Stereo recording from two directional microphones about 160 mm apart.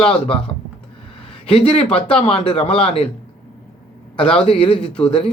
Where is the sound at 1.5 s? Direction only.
35° left (ahead or behind).